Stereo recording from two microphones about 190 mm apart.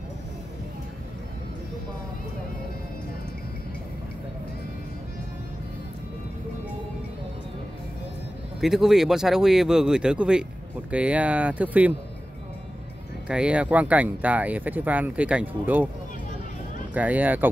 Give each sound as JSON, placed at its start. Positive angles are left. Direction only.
{"t": 8.5, "sound": "speech", "side_deg": 0}
{"t": 13.3, "sound": "speech", "side_deg": -5}
{"t": 16.9, "sound": "speech", "side_deg": -10}